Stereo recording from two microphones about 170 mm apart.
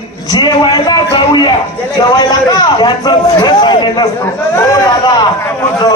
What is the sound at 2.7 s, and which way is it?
Speech, 25° left (ahead or behind).